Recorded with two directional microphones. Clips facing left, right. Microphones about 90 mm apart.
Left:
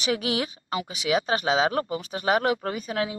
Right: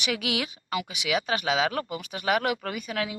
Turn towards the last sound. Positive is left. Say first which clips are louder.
# left 3 dB
turn(degrees=30)  # may be behind; listen again after turning